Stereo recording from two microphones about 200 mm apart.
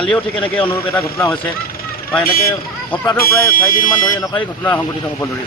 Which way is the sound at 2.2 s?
50° left (ahead or behind).